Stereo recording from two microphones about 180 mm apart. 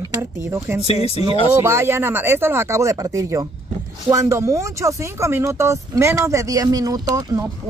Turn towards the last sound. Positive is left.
turn(degrees=-20)  # may be behind; listen again after turning